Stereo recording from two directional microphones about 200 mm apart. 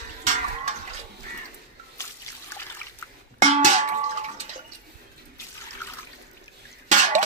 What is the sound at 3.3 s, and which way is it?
Clang, 35° right (ahead or behind).